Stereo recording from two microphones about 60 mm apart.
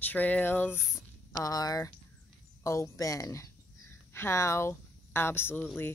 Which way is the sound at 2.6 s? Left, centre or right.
Left.